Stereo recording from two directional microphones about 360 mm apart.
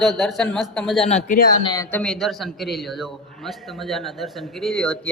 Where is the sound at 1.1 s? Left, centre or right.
Centre.